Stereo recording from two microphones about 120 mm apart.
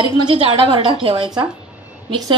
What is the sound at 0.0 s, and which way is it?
A woman's voice, 45° right (ahead or behind).